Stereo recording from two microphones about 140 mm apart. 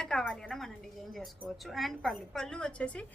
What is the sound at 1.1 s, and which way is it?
A woman's voice, centre (ahead or behind).